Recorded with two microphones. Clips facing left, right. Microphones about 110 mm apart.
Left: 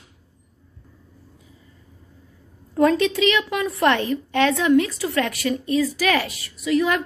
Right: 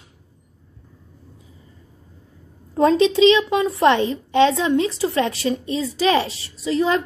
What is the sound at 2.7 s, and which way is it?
A woman's voice, 25° right (ahead or behind).